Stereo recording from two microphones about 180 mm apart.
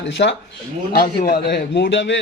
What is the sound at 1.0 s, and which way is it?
A man's voice, 60° left (ahead or behind).